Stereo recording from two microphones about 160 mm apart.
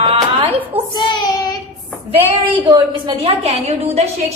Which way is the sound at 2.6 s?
30° right (ahead or behind).